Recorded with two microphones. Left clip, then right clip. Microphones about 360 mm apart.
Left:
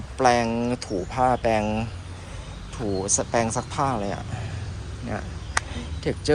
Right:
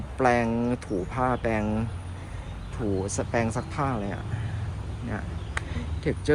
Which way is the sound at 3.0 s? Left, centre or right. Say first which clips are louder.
Left 6 dB; centre.